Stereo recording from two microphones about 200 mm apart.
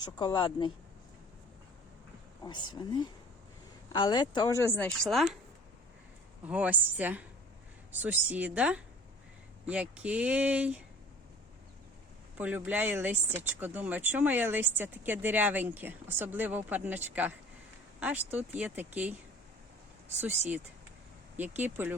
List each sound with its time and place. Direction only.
0.0 s speech: 25° left (ahead or behind)
2.4 s speech: 20° left (ahead or behind)
3.9 s speech: 25° left (ahead or behind); by 5.4 s centre (ahead or behind)
6.4 s speech: 5° right (ahead or behind)
12.4 s speech: 10° right (ahead or behind)
21.3 s speech: 10° right (ahead or behind)